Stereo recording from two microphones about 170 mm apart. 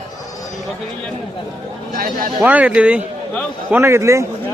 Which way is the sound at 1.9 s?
55° right (ahead or behind).